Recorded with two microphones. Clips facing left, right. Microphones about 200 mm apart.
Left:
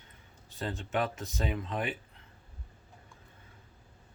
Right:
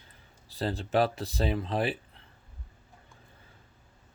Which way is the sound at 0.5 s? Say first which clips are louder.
Right 6 dB; 35° right (ahead or behind).